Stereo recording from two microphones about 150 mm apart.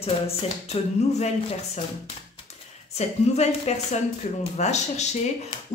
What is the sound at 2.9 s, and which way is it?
Speech, 45° left (ahead or behind).